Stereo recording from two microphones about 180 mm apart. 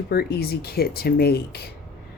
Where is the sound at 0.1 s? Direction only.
60° left (ahead or behind).